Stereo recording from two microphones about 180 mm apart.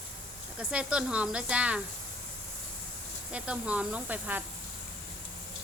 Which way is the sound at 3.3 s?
5° right (ahead or behind).